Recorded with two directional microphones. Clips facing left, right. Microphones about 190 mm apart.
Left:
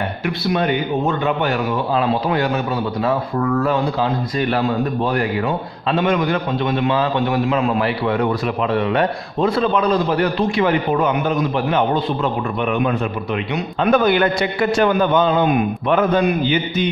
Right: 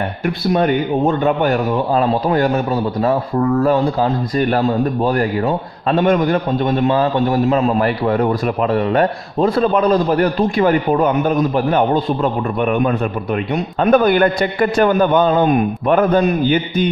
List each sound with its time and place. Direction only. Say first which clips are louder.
0.5 s a man's voice: right 4 dB; 40° right (ahead or behind)